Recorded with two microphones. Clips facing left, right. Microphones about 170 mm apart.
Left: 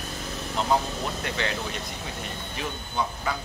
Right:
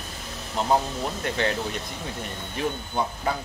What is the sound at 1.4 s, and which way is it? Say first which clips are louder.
Speech: right 5 dB; 50° right (ahead or behind).